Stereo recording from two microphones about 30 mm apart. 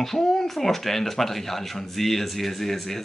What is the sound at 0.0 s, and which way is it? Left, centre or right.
Speech, centre.